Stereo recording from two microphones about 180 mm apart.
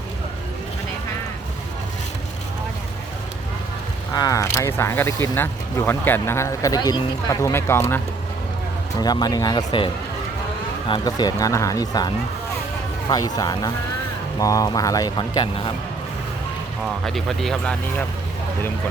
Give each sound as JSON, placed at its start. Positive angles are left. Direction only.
{"t": 4.1, "sound": "speech", "side_deg": 20}
{"t": 17.1, "sound": "speech", "side_deg": 0}